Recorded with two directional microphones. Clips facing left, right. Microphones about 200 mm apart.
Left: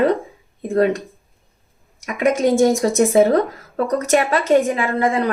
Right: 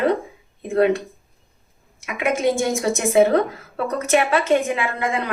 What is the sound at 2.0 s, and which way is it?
Speech, 40° left (ahead or behind).